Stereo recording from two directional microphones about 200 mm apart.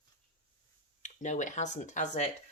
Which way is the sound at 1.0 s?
35° left (ahead or behind).